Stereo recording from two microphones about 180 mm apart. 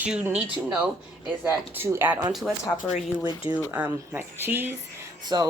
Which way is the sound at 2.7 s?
40° left (ahead or behind).